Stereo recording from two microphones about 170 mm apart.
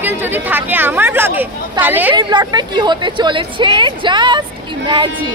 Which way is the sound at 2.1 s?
25° right (ahead or behind).